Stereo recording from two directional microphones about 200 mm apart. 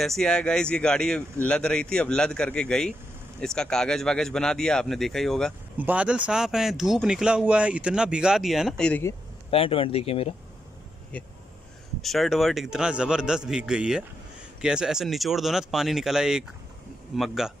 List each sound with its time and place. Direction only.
0.0 s speech: centre (ahead or behind)
9.5 s speech: 25° left (ahead or behind)
12.0 s speech: centre (ahead or behind)